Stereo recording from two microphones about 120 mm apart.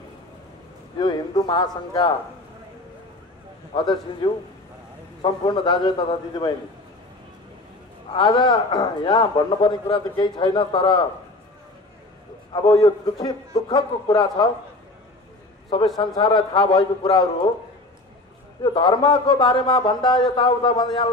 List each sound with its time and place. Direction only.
0.9 s a man's voice: 40° left (ahead or behind)
3.7 s a man's voice: 35° left (ahead or behind)
8.1 s a man's voice: 40° left (ahead or behind)
12.6 s a man's voice: 30° left (ahead or behind)
15.7 s a man's voice: 40° left (ahead or behind)
18.6 s a man's voice: 40° left (ahead or behind)